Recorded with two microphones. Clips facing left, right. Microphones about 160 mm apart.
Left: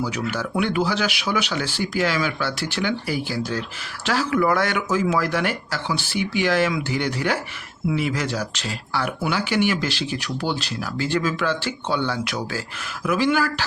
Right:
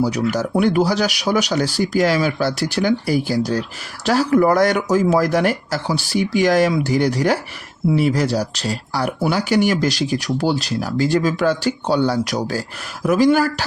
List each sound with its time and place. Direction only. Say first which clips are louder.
0.0 s speech: right 7 dB; 40° right (ahead or behind)